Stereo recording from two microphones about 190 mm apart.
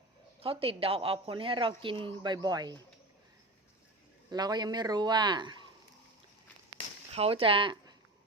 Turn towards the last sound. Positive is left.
turn(degrees=-25)  # may be behind; listen again after turning